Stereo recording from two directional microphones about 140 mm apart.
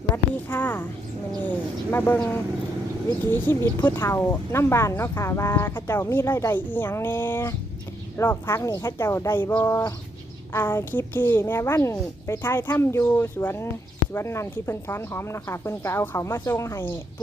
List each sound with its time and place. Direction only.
0.4 s speech: 10° left (ahead or behind)